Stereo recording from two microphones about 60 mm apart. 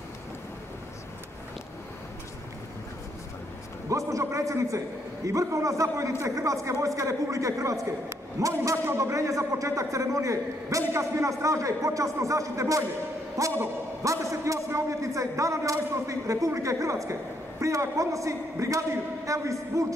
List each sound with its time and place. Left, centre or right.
3.9 s a man's voice: right
8.8 s a man's voice: right